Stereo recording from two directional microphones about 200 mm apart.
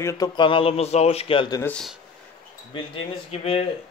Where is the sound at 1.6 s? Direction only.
5° left (ahead or behind).